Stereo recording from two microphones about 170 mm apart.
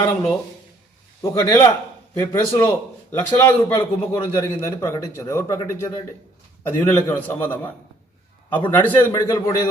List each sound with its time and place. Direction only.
1.4 s a man's voice: 15° left (ahead or behind)